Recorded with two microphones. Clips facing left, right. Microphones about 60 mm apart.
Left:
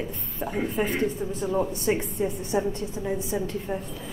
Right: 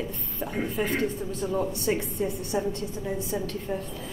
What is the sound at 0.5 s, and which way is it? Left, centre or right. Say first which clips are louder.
A woman's voice: left 1 dB; centre.